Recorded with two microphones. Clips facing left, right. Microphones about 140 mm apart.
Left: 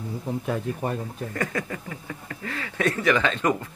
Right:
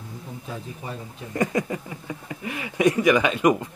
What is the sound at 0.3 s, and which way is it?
Speech, 70° left (ahead or behind).